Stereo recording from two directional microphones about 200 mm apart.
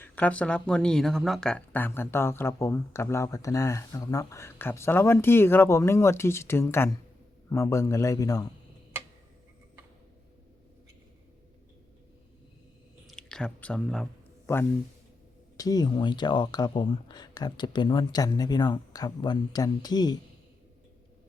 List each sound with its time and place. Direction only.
0.0 s speech: 5° left (ahead or behind)
13.1 s speech: 5° left (ahead or behind); by 20.1 s 20° left (ahead or behind)